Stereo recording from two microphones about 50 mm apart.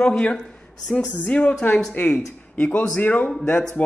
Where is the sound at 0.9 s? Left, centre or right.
Centre.